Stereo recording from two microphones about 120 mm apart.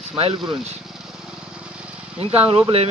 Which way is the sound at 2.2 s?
55° right (ahead or behind).